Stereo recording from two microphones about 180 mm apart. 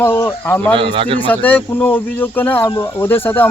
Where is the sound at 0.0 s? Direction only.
15° left (ahead or behind).